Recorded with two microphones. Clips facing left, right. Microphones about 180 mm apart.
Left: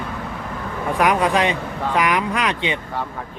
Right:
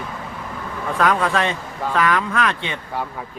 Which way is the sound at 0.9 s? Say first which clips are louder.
Left 1 dB; 15° left (ahead or behind).